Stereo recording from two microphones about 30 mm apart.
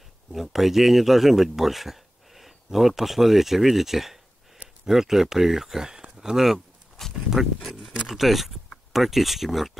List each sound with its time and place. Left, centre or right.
0.3 s a man's voice: centre
5.9 s speech: right; by 9.7 s centre